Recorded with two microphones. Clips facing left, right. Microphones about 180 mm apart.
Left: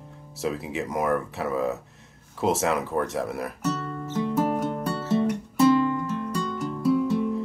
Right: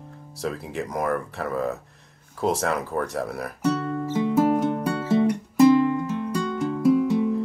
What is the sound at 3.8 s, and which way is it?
Music, 5° right (ahead or behind).